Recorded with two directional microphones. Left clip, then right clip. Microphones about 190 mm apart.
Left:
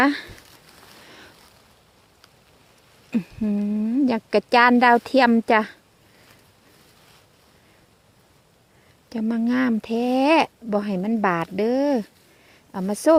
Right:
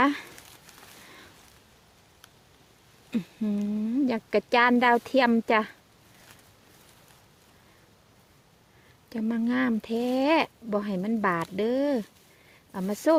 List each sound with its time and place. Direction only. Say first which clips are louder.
0.0 s speech: left 4 dB; 15° left (ahead or behind)
3.1 s a woman's voice: left 5 dB; 15° left (ahead or behind)
9.0 s speech: left 5 dB; 15° left (ahead or behind)